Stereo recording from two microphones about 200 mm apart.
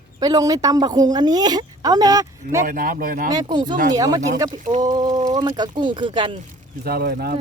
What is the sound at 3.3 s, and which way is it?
A woman's voice, 20° right (ahead or behind).